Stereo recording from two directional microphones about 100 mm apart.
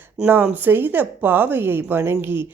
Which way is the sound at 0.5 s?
20° right (ahead or behind).